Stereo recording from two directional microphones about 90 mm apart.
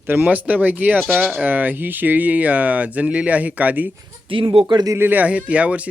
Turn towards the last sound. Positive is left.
turn(degrees=-15)  # may be behind; listen again after turning